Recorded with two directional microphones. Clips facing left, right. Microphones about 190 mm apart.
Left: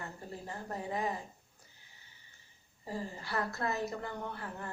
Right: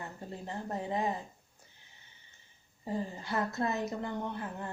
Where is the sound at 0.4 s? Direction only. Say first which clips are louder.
Right 4 dB; 25° right (ahead or behind).